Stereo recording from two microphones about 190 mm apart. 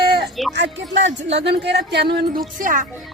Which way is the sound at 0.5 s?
70° right (ahead or behind).